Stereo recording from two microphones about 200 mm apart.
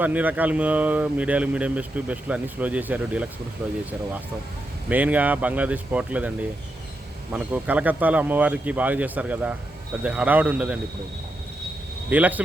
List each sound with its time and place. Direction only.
0.0 s speech: 10° right (ahead or behind)
4.9 s speech: 10° right (ahead or behind)
7.3 s speech: 5° right (ahead or behind)
12.1 s speech: 10° right (ahead or behind)